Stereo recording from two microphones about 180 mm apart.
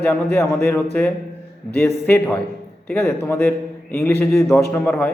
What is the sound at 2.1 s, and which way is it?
A man's voice, 10° left (ahead or behind).